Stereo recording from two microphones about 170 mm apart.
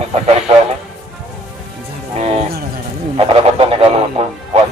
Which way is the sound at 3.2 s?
35° right (ahead or behind).